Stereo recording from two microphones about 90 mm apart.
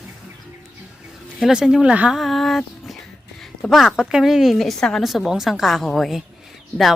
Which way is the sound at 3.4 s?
Centre (ahead or behind).